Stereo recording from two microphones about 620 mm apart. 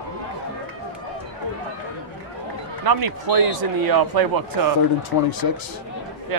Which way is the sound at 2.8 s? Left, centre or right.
Right.